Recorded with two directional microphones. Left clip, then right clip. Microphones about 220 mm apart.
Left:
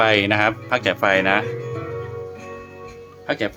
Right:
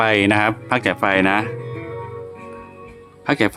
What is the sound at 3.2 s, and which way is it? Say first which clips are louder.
Speech: right 5 dB; 35° right (ahead or behind).